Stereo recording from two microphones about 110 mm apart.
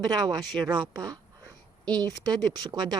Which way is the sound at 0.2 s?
40° right (ahead or behind).